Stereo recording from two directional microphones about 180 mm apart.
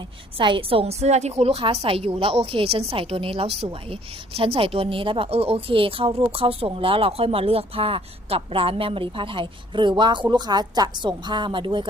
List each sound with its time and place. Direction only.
0.3 s a woman's voice: 30° right (ahead or behind)